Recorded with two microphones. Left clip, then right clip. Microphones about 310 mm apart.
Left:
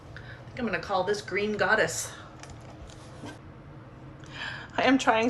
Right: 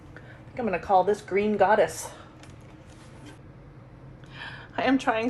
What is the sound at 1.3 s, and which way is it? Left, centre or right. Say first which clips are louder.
Speech: right 4 dB; right.